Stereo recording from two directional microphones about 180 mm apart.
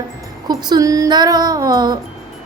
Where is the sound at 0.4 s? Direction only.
20° right (ahead or behind).